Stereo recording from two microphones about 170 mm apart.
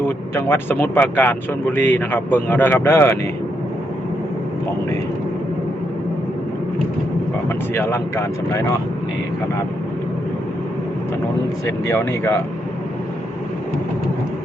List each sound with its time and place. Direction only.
0.0 s speech: 15° left (ahead or behind)
7.4 s speech: 15° left (ahead or behind)
11.6 s speech: 15° left (ahead or behind)